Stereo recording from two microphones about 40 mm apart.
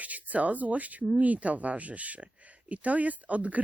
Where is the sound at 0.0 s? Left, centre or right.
Right.